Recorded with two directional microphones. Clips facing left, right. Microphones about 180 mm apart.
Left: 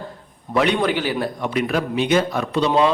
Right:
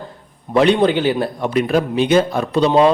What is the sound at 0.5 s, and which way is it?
A man's voice, 30° right (ahead or behind).